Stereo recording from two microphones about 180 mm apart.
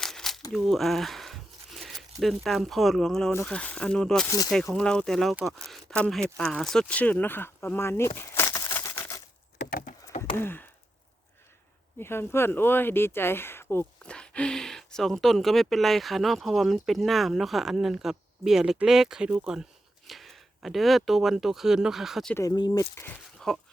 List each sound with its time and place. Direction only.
0.0 s a sound: centre (ahead or behind)
0.5 s speech: centre (ahead or behind)
5.6 s a sound: centre (ahead or behind)
6.3 s speech: centre (ahead or behind)
9.6 s wood: 50° left (ahead or behind)
10.3 s chop: 10° left (ahead or behind)
11.9 s speech: 15° left (ahead or behind)
22.4 s speech: 20° left (ahead or behind); by 23.6 s 5° left (ahead or behind)